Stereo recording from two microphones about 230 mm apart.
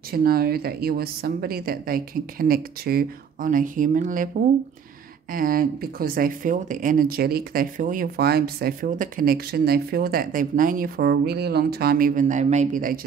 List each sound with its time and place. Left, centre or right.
0.1 s speech: right
5.3 s speech: right